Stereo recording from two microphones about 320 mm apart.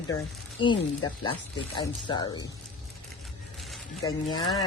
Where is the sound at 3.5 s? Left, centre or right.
Centre.